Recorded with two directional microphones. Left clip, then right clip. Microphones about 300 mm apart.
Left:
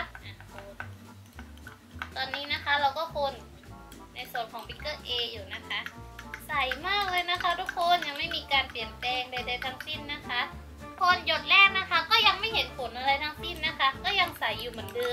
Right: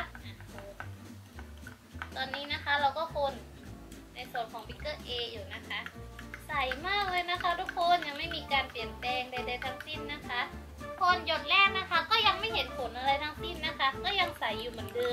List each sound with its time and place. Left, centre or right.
2.0 s speech: centre
4.2 s a woman's voice: centre